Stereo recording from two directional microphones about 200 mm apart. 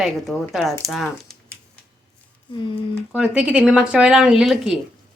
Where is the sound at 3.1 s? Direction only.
5° right (ahead or behind).